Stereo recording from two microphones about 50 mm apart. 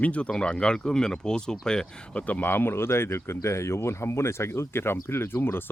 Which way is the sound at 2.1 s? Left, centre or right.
Left.